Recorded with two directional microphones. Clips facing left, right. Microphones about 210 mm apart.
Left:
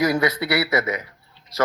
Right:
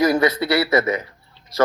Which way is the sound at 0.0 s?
25° right (ahead or behind).